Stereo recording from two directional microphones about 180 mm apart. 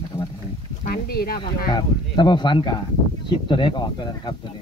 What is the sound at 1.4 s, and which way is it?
Speech, 25° left (ahead or behind).